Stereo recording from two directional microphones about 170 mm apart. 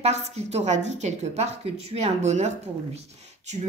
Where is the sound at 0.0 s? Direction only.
40° right (ahead or behind).